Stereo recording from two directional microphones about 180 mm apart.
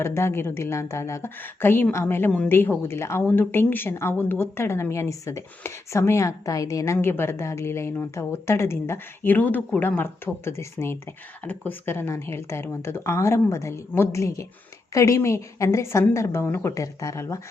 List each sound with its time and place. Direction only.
0.0 s a woman's voice: 15° left (ahead or behind)